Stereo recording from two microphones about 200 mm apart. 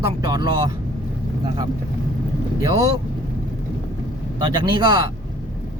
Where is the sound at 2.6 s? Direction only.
15° right (ahead or behind).